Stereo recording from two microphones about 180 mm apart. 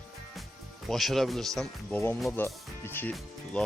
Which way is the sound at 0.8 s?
Centre (ahead or behind).